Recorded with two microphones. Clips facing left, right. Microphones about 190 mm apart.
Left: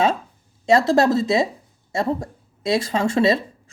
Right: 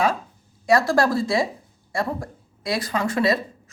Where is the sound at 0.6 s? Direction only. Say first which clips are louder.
Left 3 dB; 25° left (ahead or behind).